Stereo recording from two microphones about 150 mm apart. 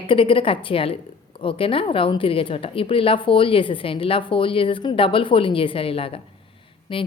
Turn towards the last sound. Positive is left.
turn(degrees=35)  # may be behind; listen again after turning